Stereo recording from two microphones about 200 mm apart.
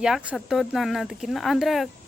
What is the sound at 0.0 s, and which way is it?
Speech, 5° right (ahead or behind).